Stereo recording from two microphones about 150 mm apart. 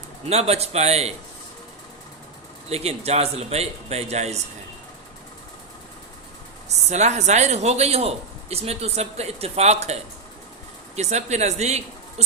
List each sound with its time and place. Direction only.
0.3 s a man's voice: 45° right (ahead or behind)
2.6 s a man's voice: 45° right (ahead or behind)
6.9 s a man's voice: 50° right (ahead or behind)